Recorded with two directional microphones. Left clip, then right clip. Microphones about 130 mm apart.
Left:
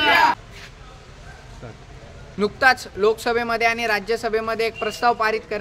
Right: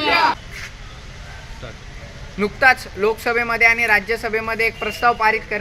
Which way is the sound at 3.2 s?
20° left (ahead or behind).